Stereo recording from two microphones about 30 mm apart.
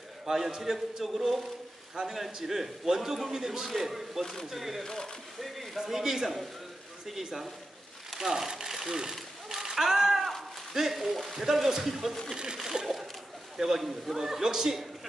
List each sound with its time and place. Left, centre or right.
0.2 s a man's voice: centre
4.8 s speech: centre
5.8 s a man's voice: centre
8.2 s speech: centre
9.5 s a sound: centre
10.7 s a man's voice: centre
11.4 s a man's voice: centre